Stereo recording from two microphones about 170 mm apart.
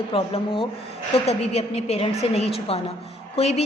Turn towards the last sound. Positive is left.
turn(degrees=35)  # may be behind; listen again after turning